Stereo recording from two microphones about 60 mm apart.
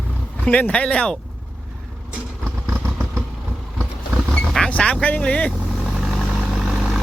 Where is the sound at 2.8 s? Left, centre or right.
Right.